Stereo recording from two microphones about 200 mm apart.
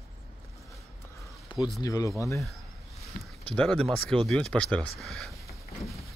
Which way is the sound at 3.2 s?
45° left (ahead or behind).